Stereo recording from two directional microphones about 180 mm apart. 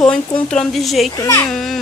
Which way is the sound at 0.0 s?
5° left (ahead or behind).